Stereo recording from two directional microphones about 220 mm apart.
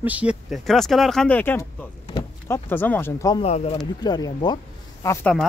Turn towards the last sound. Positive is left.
turn(degrees=5)  # may be behind; listen again after turning